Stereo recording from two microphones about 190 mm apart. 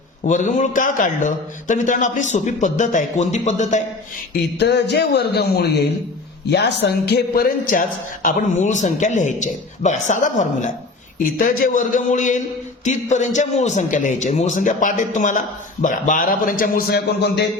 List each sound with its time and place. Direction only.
0.3 s a man's voice: 40° left (ahead or behind)
4.5 s a man's voice: 60° left (ahead or behind)